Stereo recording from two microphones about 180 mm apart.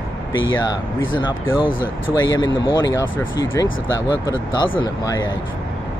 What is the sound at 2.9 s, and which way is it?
Speech, 15° left (ahead or behind).